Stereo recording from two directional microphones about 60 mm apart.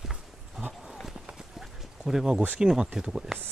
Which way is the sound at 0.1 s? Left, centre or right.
Centre.